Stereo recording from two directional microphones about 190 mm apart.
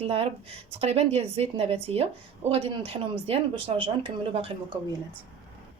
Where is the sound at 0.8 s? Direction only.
35° right (ahead or behind).